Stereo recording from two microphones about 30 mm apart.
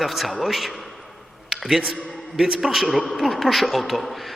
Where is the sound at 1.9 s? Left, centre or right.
Centre.